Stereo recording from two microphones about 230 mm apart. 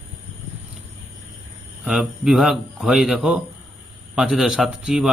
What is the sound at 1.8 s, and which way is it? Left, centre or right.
Speech, centre.